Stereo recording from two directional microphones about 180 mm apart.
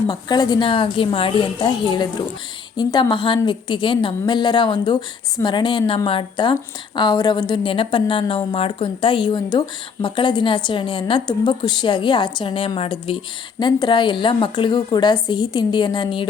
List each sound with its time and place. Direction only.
0.1 s a woman's voice: 25° left (ahead or behind)